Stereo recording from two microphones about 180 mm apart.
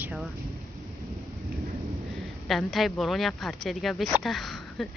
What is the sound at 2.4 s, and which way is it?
Speech, centre (ahead or behind).